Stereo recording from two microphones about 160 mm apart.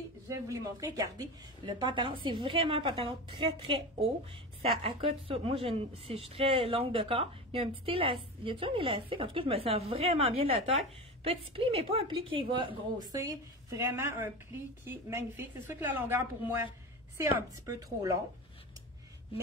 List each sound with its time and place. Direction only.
0.3 s a woman's voice: 20° right (ahead or behind)
13.7 s a woman's voice: 20° right (ahead or behind)